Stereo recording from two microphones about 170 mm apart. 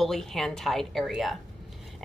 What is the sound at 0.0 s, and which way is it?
Speech, centre (ahead or behind).